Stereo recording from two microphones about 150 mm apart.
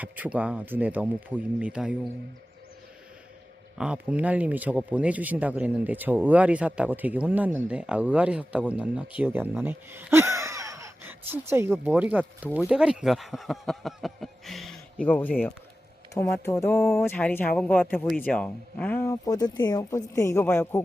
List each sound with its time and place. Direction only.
0.0 s speech: 10° right (ahead or behind)
3.8 s speech: 5° right (ahead or behind); by 20.8 s 15° left (ahead or behind)